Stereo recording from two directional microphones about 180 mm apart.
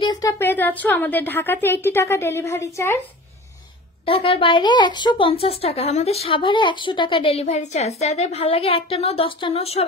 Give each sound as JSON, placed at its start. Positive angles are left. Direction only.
{"t": 0.0, "sound": "a woman's voice", "side_deg": 20}
{"t": 4.0, "sound": "a woman's voice", "side_deg": 30}